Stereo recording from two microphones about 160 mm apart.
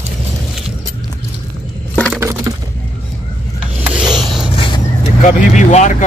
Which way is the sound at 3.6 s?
10° right (ahead or behind).